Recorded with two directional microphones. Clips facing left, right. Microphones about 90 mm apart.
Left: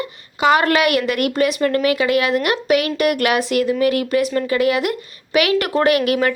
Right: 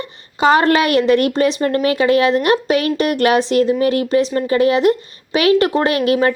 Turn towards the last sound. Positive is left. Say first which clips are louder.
# right 1 dB
turn(degrees=-30)  # may be behind; listen again after turning